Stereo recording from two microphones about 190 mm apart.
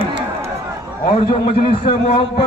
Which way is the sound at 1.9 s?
30° left (ahead or behind).